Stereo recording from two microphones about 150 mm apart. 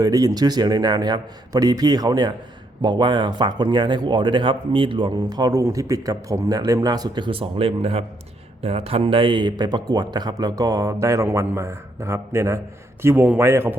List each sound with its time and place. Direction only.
0.0 s a man's voice: 25° right (ahead or behind)